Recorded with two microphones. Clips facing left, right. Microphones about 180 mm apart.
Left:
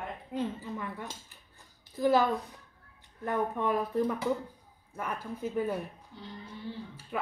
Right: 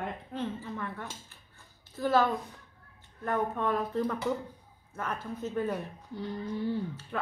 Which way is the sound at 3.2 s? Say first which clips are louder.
Even; 15° left (ahead or behind).